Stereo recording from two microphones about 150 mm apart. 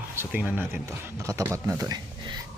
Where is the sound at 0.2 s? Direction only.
10° right (ahead or behind).